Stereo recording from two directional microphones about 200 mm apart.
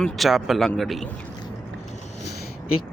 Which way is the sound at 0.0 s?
Centre (ahead or behind).